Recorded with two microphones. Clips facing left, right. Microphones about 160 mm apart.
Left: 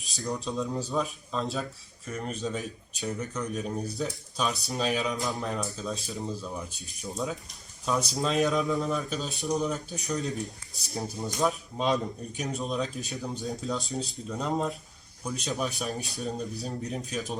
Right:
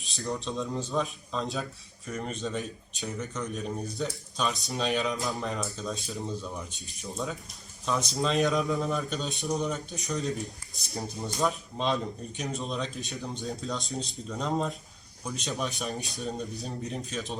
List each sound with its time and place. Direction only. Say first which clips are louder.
0.4 s speech: left 1 dB; centre (ahead or behind)